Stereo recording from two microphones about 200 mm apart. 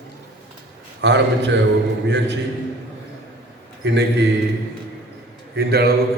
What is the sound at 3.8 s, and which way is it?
Speech, 55° right (ahead or behind).